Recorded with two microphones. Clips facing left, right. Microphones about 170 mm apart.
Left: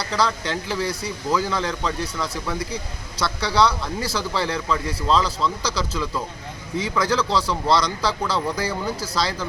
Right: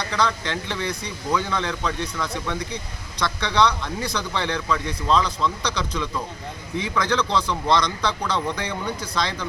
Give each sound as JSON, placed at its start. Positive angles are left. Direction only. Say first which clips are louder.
{"t": 0.1, "sound": "a man's voice", "louder": "left 2 dB", "side_deg": 5}